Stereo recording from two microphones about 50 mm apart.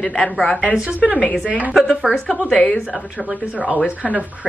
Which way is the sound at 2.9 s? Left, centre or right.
Centre.